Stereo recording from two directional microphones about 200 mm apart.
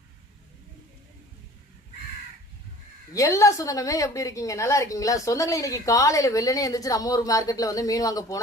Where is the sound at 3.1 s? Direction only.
15° left (ahead or behind).